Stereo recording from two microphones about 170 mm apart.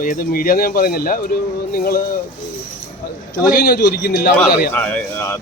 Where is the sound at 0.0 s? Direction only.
55° left (ahead or behind).